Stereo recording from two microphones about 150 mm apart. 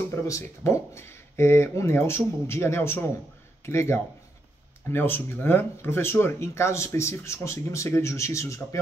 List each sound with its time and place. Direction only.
0.1 s speech: 20° left (ahead or behind)